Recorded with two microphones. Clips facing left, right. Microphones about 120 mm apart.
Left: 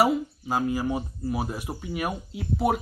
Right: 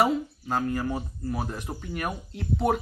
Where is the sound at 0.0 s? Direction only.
10° left (ahead or behind).